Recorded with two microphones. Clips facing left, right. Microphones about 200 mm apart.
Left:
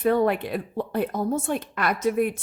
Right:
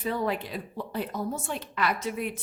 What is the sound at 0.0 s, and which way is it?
Speech, 60° left (ahead or behind).